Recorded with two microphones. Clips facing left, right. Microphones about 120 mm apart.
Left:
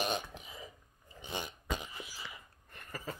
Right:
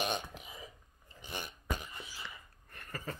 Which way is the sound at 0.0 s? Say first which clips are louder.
Left 1 dB; centre (ahead or behind).